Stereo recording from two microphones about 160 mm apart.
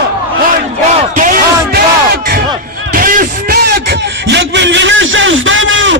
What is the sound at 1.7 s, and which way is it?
Battle cry, 75° right (ahead or behind).